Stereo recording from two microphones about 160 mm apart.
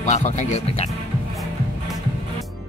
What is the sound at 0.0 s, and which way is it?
Speech, 50° left (ahead or behind).